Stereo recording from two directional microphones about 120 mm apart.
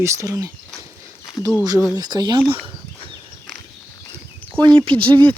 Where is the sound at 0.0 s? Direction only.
25° right (ahead or behind).